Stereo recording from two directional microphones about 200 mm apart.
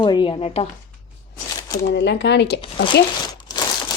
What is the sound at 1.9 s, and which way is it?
Speech, 60° left (ahead or behind).